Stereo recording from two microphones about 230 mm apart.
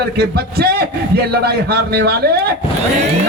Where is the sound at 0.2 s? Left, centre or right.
Right.